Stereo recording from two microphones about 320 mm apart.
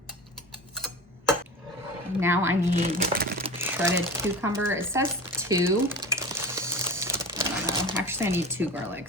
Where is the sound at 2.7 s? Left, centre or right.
Right.